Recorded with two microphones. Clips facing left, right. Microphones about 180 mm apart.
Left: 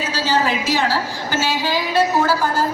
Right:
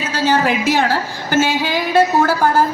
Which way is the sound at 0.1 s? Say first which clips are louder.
Right 4 dB; 55° right (ahead or behind).